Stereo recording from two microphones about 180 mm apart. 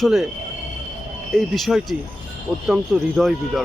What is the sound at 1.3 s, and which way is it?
Speech, centre (ahead or behind).